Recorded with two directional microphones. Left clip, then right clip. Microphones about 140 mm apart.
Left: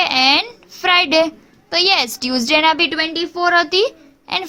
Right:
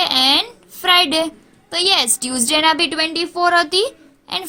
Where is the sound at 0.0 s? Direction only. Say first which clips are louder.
Left 1 dB; 20° left (ahead or behind).